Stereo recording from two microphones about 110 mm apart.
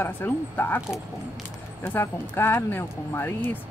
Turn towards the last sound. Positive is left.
turn(degrees=20)  # may be behind; listen again after turning